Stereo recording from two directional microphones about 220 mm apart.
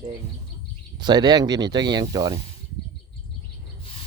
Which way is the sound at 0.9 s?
20° right (ahead or behind).